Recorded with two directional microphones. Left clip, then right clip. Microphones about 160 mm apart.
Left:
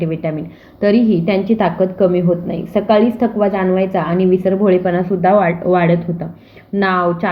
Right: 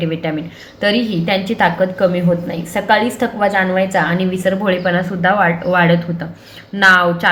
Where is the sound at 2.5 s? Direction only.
50° left (ahead or behind).